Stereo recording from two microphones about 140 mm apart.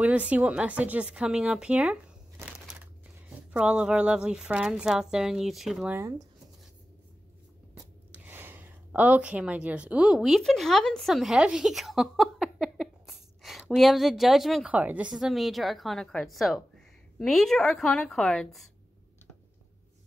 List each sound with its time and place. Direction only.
0.0 s speech: 10° right (ahead or behind)
2.3 s a sound: 15° right (ahead or behind)
3.5 s a woman's voice: 5° right (ahead or behind)
5.9 s speech: 25° right (ahead or behind)
8.2 s a woman's voice: 15° right (ahead or behind); by 18.7 s centre (ahead or behind)